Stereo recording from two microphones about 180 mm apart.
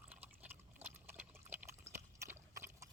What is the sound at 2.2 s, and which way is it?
Horse, 15° right (ahead or behind).